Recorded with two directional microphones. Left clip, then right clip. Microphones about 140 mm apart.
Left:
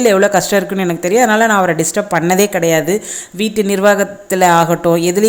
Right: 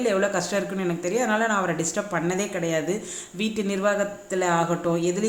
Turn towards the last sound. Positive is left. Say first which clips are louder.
# left 12 dB
turn(degrees=60)  # may be behind; listen again after turning